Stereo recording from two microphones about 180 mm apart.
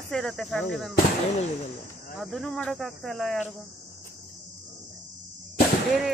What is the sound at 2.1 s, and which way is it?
Speech, centre (ahead or behind).